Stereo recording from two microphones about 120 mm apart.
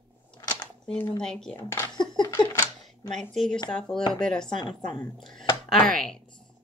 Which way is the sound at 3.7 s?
5° left (ahead or behind).